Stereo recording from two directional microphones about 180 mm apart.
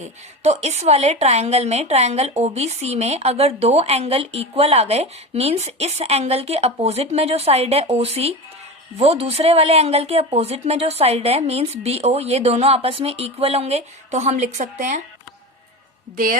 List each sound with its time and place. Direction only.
0.0 s a woman's voice: 40° right (ahead or behind)